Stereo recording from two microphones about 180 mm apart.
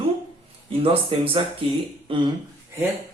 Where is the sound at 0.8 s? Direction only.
30° right (ahead or behind).